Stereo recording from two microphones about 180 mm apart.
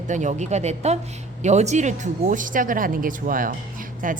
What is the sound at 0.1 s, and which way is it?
A woman's voice, 40° right (ahead or behind).